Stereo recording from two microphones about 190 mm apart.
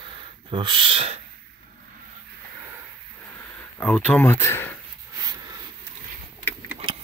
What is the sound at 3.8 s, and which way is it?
Speech, 10° left (ahead or behind).